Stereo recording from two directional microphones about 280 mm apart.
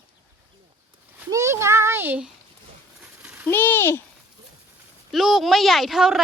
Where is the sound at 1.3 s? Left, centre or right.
Centre.